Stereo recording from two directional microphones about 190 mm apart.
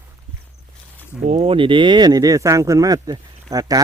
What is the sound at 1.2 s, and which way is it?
Speech, 30° right (ahead or behind).